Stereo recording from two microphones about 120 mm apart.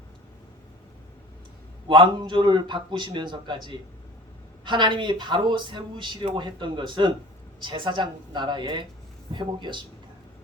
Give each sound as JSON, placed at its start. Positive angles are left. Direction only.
{"t": 1.9, "sound": "speech", "side_deg": -40}